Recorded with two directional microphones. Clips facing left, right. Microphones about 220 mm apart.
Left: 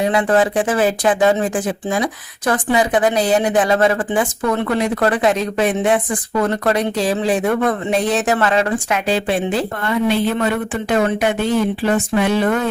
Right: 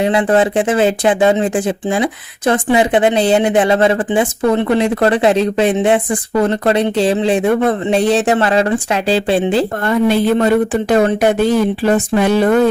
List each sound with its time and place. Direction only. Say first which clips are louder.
0.0 s speech: right 3 dB; 25° right (ahead or behind)
9.8 s speech: right 3 dB; 45° right (ahead or behind)